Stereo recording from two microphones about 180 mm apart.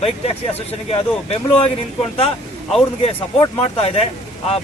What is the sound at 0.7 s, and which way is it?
A man's voice, 35° left (ahead or behind).